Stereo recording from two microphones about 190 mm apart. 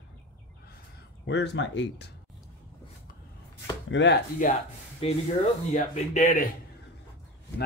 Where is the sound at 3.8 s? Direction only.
70° left (ahead or behind).